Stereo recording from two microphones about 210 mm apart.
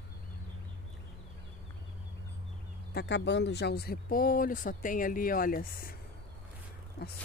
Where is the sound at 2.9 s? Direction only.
50° left (ahead or behind).